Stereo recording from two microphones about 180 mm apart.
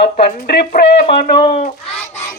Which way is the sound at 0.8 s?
55° left (ahead or behind).